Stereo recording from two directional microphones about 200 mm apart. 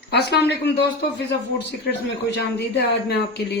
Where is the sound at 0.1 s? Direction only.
55° left (ahead or behind).